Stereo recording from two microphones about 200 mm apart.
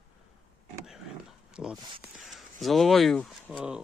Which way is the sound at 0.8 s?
Centre (ahead or behind).